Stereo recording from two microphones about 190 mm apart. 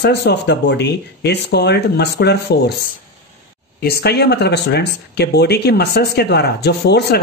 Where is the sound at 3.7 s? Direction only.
55° left (ahead or behind).